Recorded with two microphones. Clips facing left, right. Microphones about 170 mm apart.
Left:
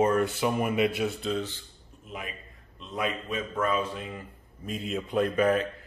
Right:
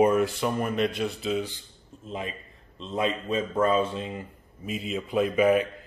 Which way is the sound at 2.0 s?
25° right (ahead or behind).